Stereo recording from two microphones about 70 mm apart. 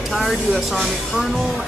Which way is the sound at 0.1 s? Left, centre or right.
Centre.